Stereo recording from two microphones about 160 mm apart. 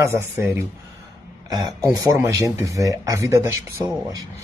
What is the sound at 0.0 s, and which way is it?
Speech, 15° right (ahead or behind).